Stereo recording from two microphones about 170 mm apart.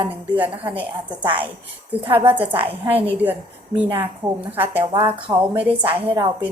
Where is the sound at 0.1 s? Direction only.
10° right (ahead or behind).